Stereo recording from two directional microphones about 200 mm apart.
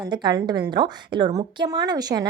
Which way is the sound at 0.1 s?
25° right (ahead or behind).